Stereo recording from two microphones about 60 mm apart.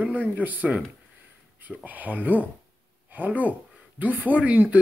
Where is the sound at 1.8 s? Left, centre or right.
Right.